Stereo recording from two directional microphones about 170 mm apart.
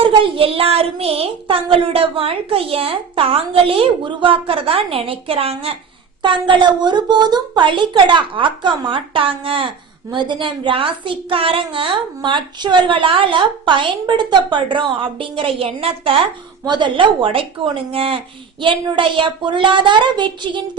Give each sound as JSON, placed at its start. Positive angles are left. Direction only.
{"t": 0.0, "sound": "a woman's voice", "side_deg": -35}